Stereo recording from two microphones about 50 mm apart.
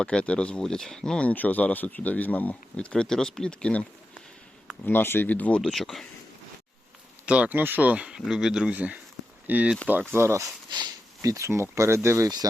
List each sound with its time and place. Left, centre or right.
0.0 s speech: centre
0.6 s speech: centre
1.2 s speech: left
2.7 s speech: centre
4.9 s speech: left
5.3 s speech: left
5.6 s speech: centre
7.3 s speech: right
7.5 s speech: right
7.8 s speech: right
8.3 s speech: centre
8.7 s speech: right
10.1 s speech: right